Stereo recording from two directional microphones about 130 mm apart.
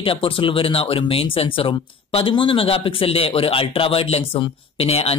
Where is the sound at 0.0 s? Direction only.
45° left (ahead or behind).